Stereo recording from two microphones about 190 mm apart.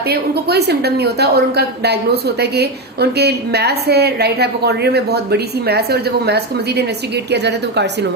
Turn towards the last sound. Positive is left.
turn(degrees=-65)  # may be behind; listen again after turning